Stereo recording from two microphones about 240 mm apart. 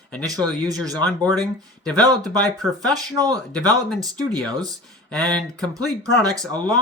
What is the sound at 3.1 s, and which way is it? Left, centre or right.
Speech, centre.